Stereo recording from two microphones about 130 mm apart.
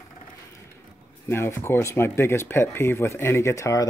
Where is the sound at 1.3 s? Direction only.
20° left (ahead or behind).